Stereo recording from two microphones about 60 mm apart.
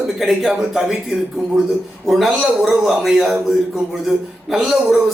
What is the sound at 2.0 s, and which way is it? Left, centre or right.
A man's voice, centre.